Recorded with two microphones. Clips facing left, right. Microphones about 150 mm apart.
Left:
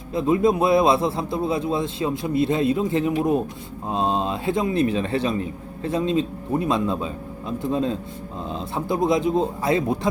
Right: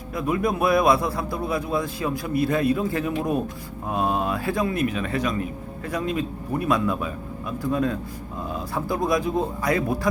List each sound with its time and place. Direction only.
0.1 s a man's voice: 25° left (ahead or behind)